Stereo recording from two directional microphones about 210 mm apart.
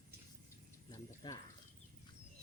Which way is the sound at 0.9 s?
15° left (ahead or behind).